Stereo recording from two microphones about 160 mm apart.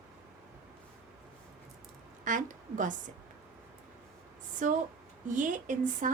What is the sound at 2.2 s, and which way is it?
Speech, 55° right (ahead or behind).